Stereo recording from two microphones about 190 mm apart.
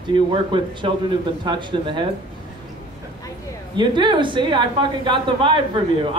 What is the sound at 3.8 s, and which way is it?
A man's voice, 25° right (ahead or behind).